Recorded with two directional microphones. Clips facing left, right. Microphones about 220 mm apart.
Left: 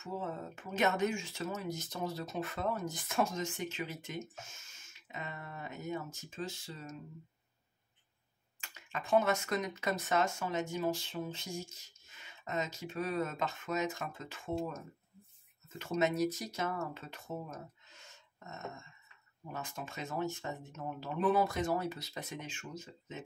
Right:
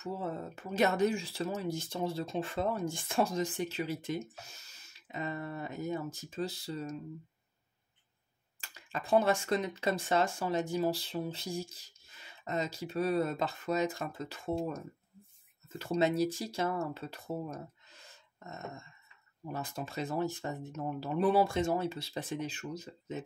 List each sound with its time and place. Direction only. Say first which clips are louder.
0.0 s speech: right 3 dB; 35° right (ahead or behind)
8.5 s speech: right 2 dB; 35° right (ahead or behind)
15.8 s speech: right 2 dB; 30° right (ahead or behind)